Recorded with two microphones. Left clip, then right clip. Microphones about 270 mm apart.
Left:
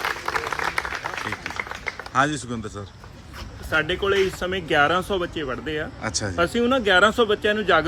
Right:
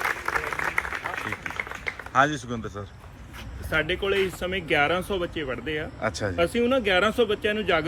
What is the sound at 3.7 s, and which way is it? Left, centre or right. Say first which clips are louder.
Speech: left 3 dB; centre.